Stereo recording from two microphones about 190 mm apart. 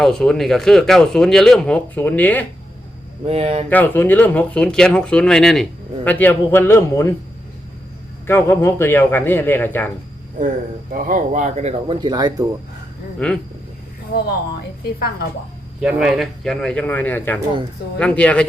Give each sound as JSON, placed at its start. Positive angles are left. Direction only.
{"t": 0.0, "sound": "speech", "side_deg": 0}
{"t": 3.2, "sound": "speech", "side_deg": -30}
{"t": 3.7, "sound": "speech", "side_deg": 10}
{"t": 8.3, "sound": "speech", "side_deg": 10}
{"t": 10.9, "sound": "speech", "side_deg": -40}
{"t": 13.1, "sound": "speech", "side_deg": 5}
{"t": 14.1, "sound": "speech", "side_deg": 55}
{"t": 15.8, "sound": "speech", "side_deg": -5}